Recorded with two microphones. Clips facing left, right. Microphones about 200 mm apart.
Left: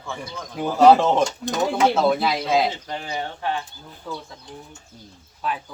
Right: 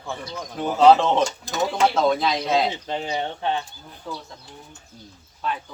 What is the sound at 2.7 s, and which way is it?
Speech, 20° right (ahead or behind).